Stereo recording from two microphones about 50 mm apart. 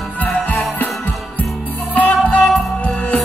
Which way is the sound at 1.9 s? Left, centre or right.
Left.